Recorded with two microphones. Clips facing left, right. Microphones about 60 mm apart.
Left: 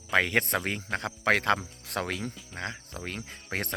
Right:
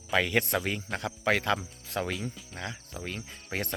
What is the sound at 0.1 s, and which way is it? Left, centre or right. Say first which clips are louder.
Speech: left 1 dB; left.